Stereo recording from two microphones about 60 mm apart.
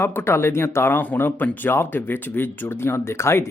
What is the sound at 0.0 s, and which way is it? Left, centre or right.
Speech, left.